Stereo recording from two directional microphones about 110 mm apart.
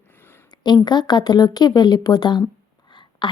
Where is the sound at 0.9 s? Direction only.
40° left (ahead or behind).